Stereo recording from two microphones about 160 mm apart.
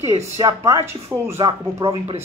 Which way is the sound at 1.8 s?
35° right (ahead or behind).